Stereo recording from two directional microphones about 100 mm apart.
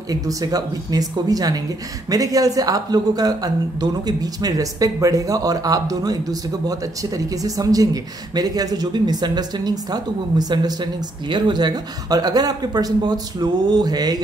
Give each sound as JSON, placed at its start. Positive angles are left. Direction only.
{"t": 0.1, "sound": "speech", "side_deg": -35}